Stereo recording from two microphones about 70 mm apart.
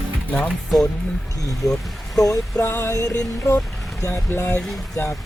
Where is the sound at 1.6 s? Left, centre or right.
Left.